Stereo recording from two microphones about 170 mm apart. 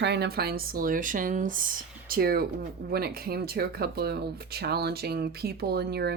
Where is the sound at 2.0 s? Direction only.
60° right (ahead or behind).